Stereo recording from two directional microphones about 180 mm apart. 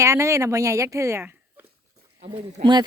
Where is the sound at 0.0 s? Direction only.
15° right (ahead or behind).